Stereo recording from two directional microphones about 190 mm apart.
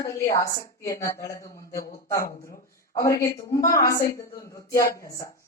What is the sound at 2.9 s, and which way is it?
Speech, 15° left (ahead or behind).